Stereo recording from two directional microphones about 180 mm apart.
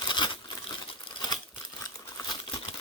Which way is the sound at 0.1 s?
25° left (ahead or behind).